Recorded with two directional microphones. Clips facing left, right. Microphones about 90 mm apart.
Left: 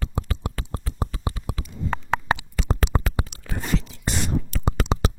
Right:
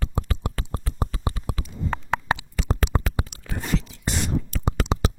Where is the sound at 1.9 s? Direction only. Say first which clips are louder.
Left 1 dB; 45° left (ahead or behind).